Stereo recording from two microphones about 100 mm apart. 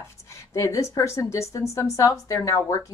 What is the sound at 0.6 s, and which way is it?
Speech, 35° left (ahead or behind).